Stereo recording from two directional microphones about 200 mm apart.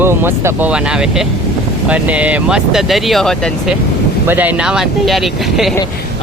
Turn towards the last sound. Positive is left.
turn(degrees=0)  # may be behind; listen again after turning